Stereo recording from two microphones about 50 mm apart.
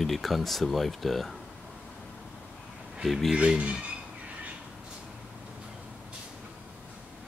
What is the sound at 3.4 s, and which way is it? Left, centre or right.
Speech, right.